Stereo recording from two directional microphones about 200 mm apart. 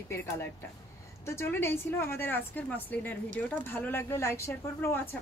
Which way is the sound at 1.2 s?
10° left (ahead or behind).